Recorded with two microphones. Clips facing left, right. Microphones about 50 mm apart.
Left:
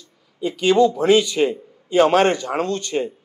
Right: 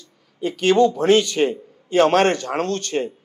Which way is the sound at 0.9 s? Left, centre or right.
Centre.